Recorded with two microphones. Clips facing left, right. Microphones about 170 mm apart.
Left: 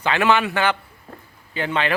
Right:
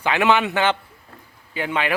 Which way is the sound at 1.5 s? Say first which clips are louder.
Left 1 dB; 10° right (ahead or behind).